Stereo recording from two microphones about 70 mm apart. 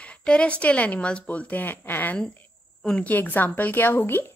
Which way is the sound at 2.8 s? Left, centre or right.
Centre.